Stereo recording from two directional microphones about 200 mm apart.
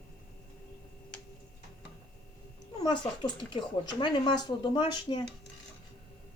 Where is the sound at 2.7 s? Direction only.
20° left (ahead or behind).